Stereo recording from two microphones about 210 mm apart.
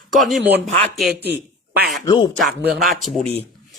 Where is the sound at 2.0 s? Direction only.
25° left (ahead or behind).